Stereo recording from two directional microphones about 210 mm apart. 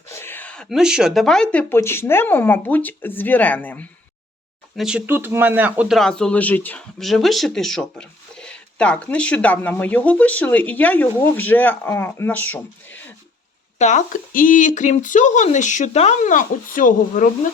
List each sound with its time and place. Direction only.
0.1 s speech: 10° left (ahead or behind)
4.8 s speech: 5° right (ahead or behind)
13.7 s speech: 35° left (ahead or behind)